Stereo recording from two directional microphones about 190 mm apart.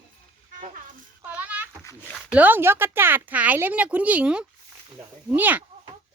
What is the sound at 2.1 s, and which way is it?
Speech, 5° right (ahead or behind).